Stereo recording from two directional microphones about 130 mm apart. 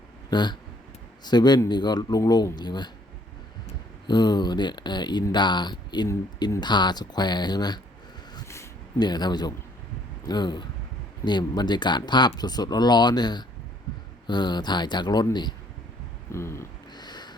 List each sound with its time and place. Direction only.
0.3 s speech: 35° left (ahead or behind)
4.0 s speech: 35° left (ahead or behind)
8.4 s a sound: 20° left (ahead or behind)
9.0 s speech: 35° left (ahead or behind)
16.3 s speech: 20° left (ahead or behind)
16.9 s a sound: 35° left (ahead or behind)